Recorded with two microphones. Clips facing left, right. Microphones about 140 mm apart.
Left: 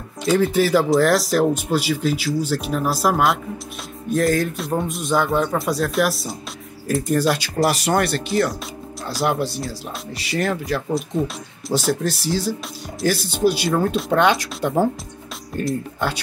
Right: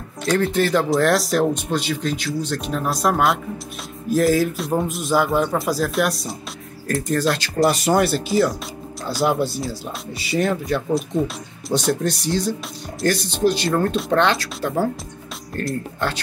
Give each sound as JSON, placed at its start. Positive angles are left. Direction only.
{"t": 0.2, "sound": "speech", "side_deg": 5}
{"t": 14.2, "sound": "speech", "side_deg": 15}